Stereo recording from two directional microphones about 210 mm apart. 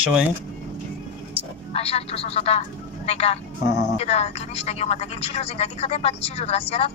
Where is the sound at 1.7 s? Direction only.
30° left (ahead or behind).